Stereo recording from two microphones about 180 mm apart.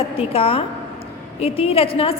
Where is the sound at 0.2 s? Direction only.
30° left (ahead or behind).